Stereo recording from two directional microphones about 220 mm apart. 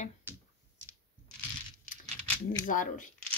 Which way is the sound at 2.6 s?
35° left (ahead or behind).